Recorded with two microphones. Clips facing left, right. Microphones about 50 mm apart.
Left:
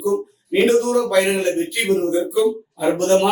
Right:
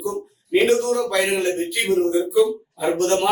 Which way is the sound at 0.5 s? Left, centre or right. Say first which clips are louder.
Left 2 dB; centre.